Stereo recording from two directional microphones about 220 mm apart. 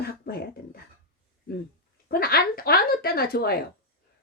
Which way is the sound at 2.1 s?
45° left (ahead or behind).